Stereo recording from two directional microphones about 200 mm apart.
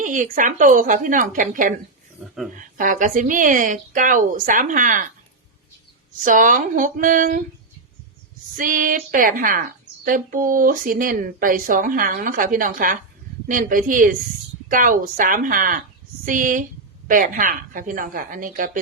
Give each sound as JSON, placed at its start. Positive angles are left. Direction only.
{"t": 0.0, "sound": "speech", "side_deg": -40}
{"t": 2.2, "sound": "speech", "side_deg": 0}
{"t": 2.7, "sound": "speech", "side_deg": -40}
{"t": 6.2, "sound": "speech", "side_deg": -40}
{"t": 8.5, "sound": "a woman's voice", "side_deg": -40}